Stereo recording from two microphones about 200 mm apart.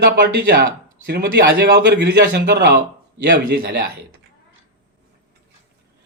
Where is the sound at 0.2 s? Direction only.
60° right (ahead or behind).